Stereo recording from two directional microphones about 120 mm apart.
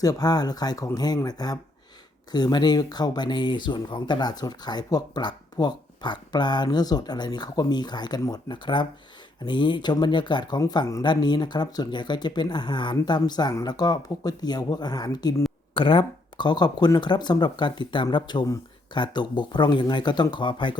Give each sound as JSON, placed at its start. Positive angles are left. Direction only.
{"t": 0.0, "sound": "speech", "side_deg": 30}
{"t": 15.7, "sound": "speech", "side_deg": 45}